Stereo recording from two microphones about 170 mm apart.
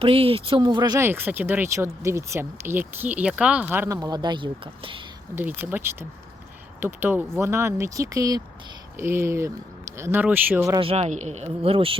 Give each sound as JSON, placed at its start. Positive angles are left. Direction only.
{"t": 0.0, "sound": "speech", "side_deg": -35}
{"t": 5.3, "sound": "speech", "side_deg": -10}
{"t": 10.8, "sound": "speech", "side_deg": -35}